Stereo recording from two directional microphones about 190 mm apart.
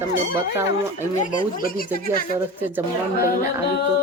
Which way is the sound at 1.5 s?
50° left (ahead or behind).